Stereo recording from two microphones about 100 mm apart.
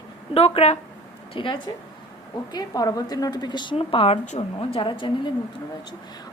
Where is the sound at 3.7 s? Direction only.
75° left (ahead or behind).